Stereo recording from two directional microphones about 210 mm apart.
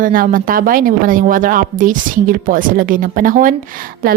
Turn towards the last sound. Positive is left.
turn(degrees=-40)  # may be behind; listen again after turning